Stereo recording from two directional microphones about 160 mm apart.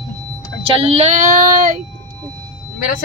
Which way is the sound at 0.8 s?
40° right (ahead or behind).